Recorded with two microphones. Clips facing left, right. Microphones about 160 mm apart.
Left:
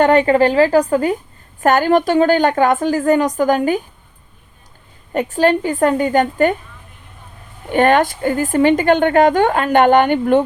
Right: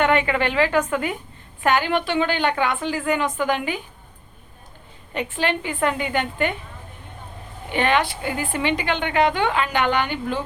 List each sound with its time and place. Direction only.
0.0 s a woman's voice: 40° left (ahead or behind)
5.1 s a woman's voice: 40° left (ahead or behind)
7.7 s a woman's voice: 45° left (ahead or behind)